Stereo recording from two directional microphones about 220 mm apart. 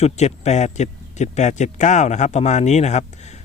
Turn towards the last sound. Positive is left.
turn(degrees=30)  # may be behind; listen again after turning